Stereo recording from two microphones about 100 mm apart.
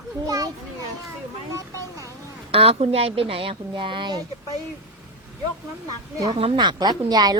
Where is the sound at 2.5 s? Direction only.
75° right (ahead or behind); by 4.1 s 55° right (ahead or behind).